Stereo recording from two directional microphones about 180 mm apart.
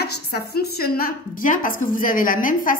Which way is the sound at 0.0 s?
65° left (ahead or behind).